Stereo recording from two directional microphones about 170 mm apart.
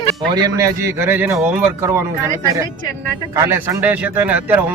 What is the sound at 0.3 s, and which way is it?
Speech, 20° right (ahead or behind).